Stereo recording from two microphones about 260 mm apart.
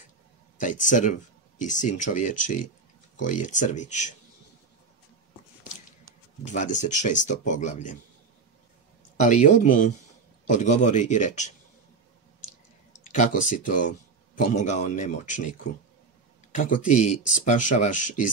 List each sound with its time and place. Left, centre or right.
0.6 s speech: left
6.4 s speech: left
9.1 s speech: left
13.1 s speech: left